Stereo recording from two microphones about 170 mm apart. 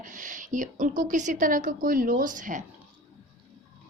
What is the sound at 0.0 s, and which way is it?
A woman's voice, 50° right (ahead or behind).